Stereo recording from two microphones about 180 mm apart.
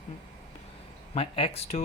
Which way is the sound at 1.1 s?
30° left (ahead or behind).